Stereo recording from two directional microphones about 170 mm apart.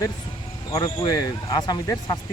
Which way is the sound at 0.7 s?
25° left (ahead or behind).